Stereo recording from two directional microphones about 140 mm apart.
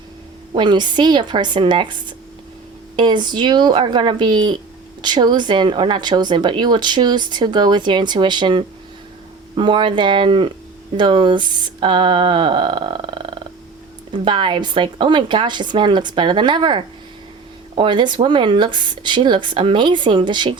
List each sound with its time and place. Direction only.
0.5 s speech: 35° right (ahead or behind)